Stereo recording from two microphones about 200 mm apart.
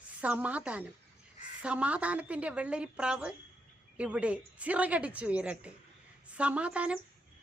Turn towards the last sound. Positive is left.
turn(degrees=-5)  # may be behind; listen again after turning